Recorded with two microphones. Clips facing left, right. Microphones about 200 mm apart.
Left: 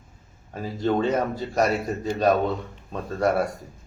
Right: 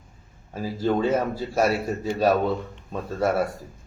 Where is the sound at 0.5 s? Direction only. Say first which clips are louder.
Even; 5° right (ahead or behind).